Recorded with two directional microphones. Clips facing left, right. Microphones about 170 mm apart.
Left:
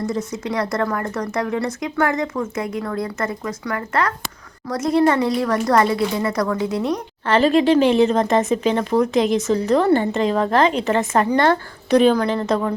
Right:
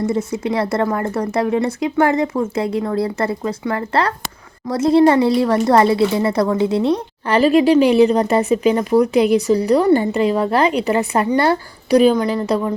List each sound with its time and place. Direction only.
0.0 s speech: 25° right (ahead or behind)
7.3 s speech: 10° right (ahead or behind)